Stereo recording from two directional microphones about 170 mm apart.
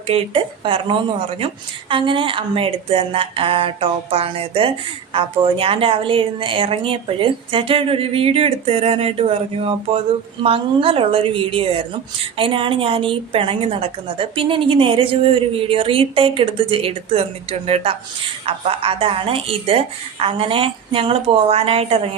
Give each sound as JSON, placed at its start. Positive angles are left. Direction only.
{"t": 0.1, "sound": "a woman's voice", "side_deg": -35}